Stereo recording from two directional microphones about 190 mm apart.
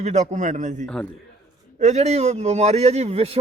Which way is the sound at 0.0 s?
35° right (ahead or behind).